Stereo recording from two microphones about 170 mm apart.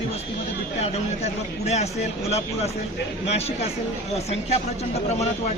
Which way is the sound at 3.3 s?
35° left (ahead or behind).